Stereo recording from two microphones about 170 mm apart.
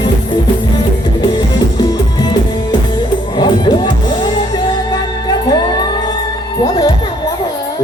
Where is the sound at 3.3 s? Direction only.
25° left (ahead or behind).